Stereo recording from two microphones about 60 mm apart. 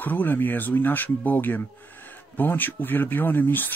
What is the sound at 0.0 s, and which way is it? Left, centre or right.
Speech, left.